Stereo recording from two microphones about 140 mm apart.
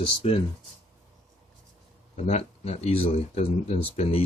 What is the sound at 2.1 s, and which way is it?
Speech, 50° left (ahead or behind).